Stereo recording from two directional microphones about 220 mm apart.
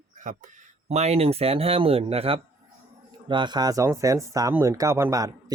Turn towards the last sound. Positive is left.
turn(degrees=-15)  # may be behind; listen again after turning